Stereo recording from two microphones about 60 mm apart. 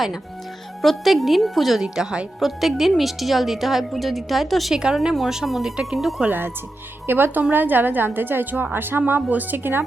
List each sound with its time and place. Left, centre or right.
0.8 s a woman's voice: centre
4.7 s a woman's voice: centre
6.2 s a woman's voice: right